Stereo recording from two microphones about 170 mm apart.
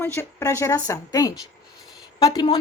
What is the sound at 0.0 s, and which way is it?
Speech, 15° left (ahead or behind).